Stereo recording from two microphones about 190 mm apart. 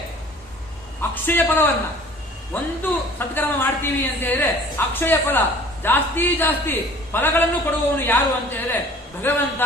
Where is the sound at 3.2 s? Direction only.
10° left (ahead or behind).